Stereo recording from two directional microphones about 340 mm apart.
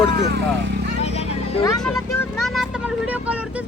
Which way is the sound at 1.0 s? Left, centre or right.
Centre.